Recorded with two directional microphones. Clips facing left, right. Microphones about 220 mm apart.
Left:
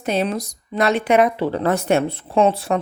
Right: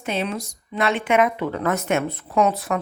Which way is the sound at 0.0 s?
40° left (ahead or behind).